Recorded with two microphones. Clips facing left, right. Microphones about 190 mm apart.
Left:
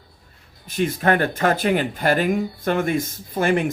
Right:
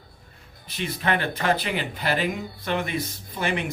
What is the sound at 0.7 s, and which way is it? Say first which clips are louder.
Speech: left 7 dB; 45° left (ahead or behind).